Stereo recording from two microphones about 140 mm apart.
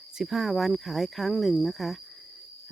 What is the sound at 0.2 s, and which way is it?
Speech, centre (ahead or behind).